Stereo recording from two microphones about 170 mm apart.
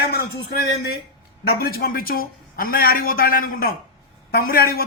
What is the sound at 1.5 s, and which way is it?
A man's voice, 60° left (ahead or behind).